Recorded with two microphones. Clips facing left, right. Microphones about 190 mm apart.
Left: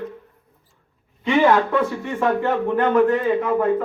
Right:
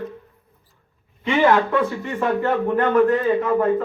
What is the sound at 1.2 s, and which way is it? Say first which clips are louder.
Speech: left 1 dB; 15° left (ahead or behind).